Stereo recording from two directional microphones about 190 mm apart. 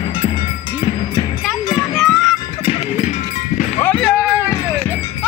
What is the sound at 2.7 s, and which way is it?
Clip-clop, 35° left (ahead or behind).